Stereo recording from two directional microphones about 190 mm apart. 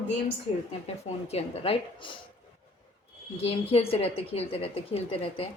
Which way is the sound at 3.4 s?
30° left (ahead or behind).